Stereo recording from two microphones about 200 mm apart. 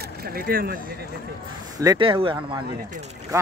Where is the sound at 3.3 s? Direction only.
15° right (ahead or behind).